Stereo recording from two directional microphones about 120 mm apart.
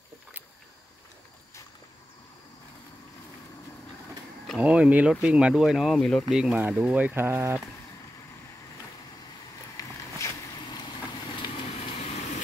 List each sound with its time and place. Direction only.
4.6 s speech: 10° right (ahead or behind)
9.8 s vehicle: 25° left (ahead or behind)